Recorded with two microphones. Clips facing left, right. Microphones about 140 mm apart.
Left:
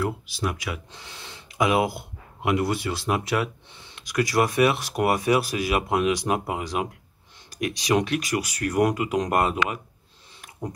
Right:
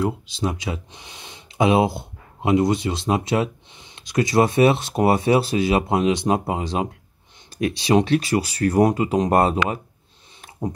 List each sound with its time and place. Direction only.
0.0 s speech: 25° right (ahead or behind)